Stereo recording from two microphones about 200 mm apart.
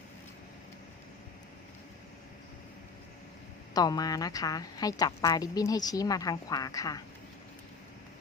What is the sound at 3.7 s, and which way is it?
A woman's voice, 20° left (ahead or behind).